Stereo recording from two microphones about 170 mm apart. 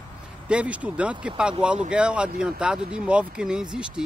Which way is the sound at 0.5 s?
5° right (ahead or behind).